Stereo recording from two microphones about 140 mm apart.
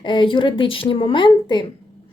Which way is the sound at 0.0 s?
35° left (ahead or behind).